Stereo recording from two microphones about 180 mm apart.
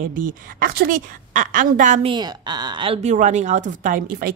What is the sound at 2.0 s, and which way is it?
Speech, 25° right (ahead or behind).